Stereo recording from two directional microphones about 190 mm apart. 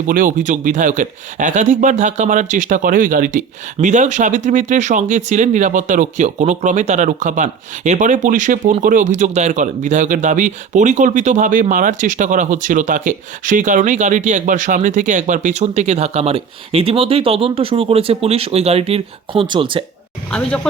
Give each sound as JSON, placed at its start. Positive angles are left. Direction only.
{"t": 0.1, "sound": "speech", "side_deg": -45}